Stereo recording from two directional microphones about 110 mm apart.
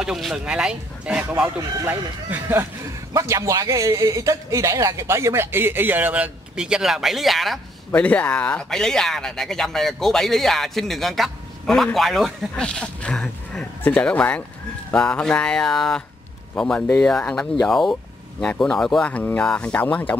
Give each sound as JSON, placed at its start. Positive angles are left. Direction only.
{"t": 0.0, "sound": "speech", "side_deg": -5}
{"t": 1.9, "sound": "a man's voice", "side_deg": -20}
{"t": 7.9, "sound": "speech", "side_deg": 10}